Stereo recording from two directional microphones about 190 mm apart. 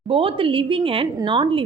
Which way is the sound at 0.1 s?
30° right (ahead or behind).